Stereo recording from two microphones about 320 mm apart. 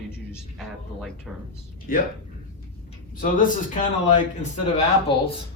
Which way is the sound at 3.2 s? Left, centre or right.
Left.